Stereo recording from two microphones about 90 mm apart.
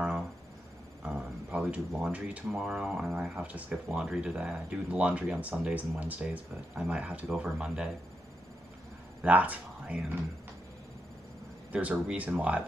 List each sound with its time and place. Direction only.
1.0 s speech: 10° right (ahead or behind)
9.2 s speech: 15° right (ahead or behind)
11.7 s speech: 15° right (ahead or behind)